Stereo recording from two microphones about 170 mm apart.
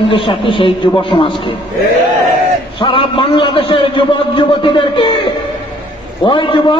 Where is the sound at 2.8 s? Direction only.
30° left (ahead or behind).